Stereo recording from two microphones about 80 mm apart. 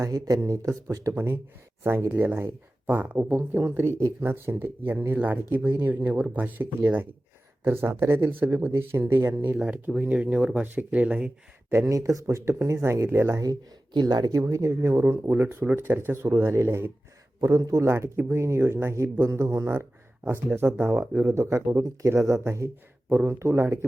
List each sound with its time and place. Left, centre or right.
0.0 s speech: right
1.1 s speech: right
11.9 s speech: right
13.4 s speech: right
14.3 s speech: right
21.2 s speech: right